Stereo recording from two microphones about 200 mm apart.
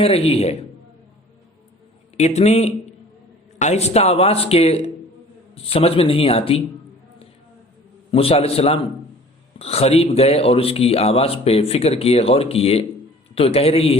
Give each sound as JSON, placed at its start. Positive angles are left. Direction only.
{"t": 0.0, "sound": "speech", "side_deg": 30}
{"t": 2.1, "sound": "a man's voice", "side_deg": 35}
{"t": 8.1, "sound": "a man's voice", "side_deg": 30}